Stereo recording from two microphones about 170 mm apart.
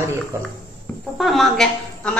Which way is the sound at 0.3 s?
15° right (ahead or behind).